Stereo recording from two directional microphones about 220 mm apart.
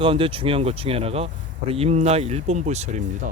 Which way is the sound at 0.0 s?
25° right (ahead or behind).